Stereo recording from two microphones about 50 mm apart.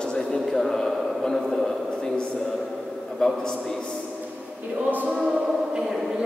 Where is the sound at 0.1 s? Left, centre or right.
Centre.